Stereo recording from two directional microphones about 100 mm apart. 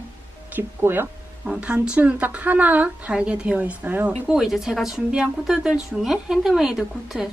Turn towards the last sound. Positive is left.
turn(degrees=-5)  # may be behind; listen again after turning